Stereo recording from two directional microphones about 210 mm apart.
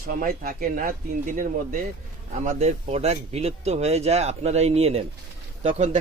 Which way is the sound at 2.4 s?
35° right (ahead or behind).